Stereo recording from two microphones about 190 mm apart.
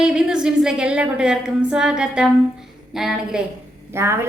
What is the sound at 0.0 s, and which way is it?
A woman's voice, 5° right (ahead or behind).